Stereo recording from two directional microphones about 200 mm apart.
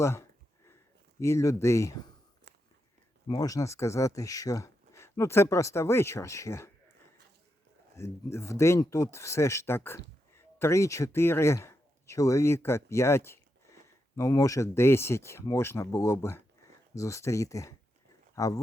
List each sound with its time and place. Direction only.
0.0 s speech: 15° left (ahead or behind)
2.5 s whispering: 60° right (ahead or behind)
3.2 s speech: 20° left (ahead or behind)
7.9 s speech: 15° left (ahead or behind)